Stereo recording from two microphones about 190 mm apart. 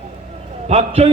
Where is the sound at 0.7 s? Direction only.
35° right (ahead or behind).